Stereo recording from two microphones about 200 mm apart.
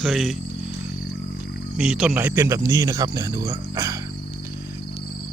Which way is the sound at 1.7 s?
Centre (ahead or behind).